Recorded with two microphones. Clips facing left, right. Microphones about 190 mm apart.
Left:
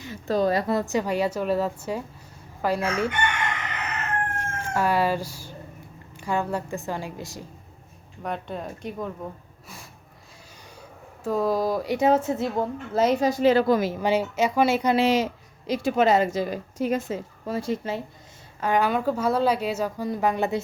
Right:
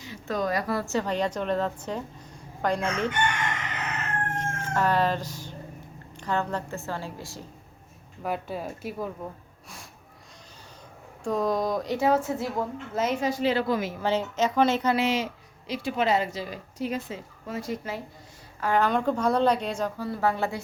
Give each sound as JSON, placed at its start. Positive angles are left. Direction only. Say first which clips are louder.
{"t": 0.3, "sound": "a woman's voice", "louder": "left 5 dB", "side_deg": 30}
{"t": 4.4, "sound": "a woman's voice", "louder": "left 1 dB", "side_deg": 10}
{"t": 8.2, "sound": "speech", "louder": "even", "side_deg": -5}
{"t": 11.2, "sound": "speech", "louder": "left 2 dB", "side_deg": 5}
{"t": 11.9, "sound": "a woman's voice", "louder": "left 3 dB", "side_deg": 20}
{"t": 14.0, "sound": "a woman's voice", "louder": "left 3 dB", "side_deg": 10}
{"t": 14.9, "sound": "speech", "louder": "left 5 dB", "side_deg": 35}
{"t": 18.6, "sound": "a woman's voice", "louder": "left 1 dB", "side_deg": 10}